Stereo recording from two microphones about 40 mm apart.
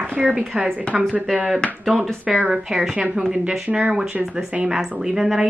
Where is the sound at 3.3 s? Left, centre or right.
Right.